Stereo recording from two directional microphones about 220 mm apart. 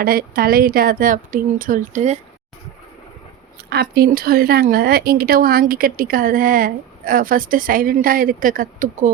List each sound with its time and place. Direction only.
0.0 s speech: 40° right (ahead or behind)
3.7 s speech: 45° right (ahead or behind)